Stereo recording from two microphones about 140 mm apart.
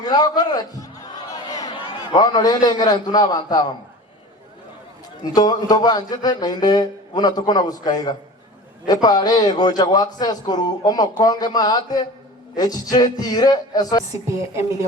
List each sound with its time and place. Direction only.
0.1 s a man's voice: 30° left (ahead or behind)
5.2 s speech: 30° left (ahead or behind)
14.1 s speech: 20° right (ahead or behind)